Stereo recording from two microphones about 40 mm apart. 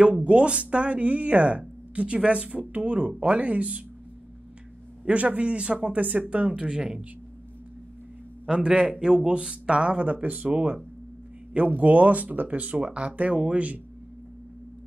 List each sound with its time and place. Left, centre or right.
0.0 s speech: right
5.0 s speech: right
8.5 s speech: right